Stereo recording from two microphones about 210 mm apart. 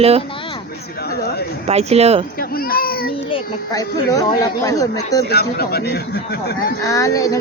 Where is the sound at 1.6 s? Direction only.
30° right (ahead or behind).